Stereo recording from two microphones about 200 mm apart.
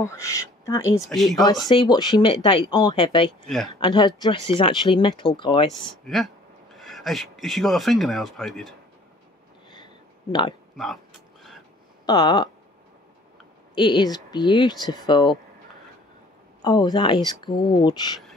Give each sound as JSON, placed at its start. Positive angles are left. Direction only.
{"t": 0.0, "sound": "speech", "side_deg": 15}
{"t": 1.0, "sound": "speech", "side_deg": 0}
{"t": 1.7, "sound": "speech", "side_deg": 20}
{"t": 6.0, "sound": "speech", "side_deg": 0}
{"t": 12.1, "sound": "speech", "side_deg": 20}
{"t": 13.7, "sound": "speech", "side_deg": 20}
{"t": 16.6, "sound": "speech", "side_deg": 20}